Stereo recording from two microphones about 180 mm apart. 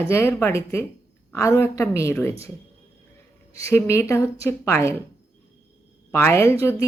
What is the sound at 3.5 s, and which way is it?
Speech, 15° left (ahead or behind).